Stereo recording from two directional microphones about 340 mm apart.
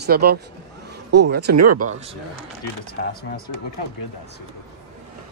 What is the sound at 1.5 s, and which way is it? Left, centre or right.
Speech, right.